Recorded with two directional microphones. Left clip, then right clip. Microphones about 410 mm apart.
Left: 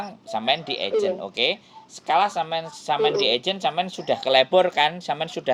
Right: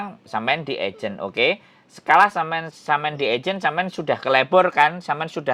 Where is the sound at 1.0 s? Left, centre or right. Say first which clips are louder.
Right 1 dB; right.